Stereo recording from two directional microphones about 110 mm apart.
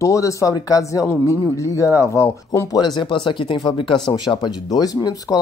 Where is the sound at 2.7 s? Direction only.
40° left (ahead or behind).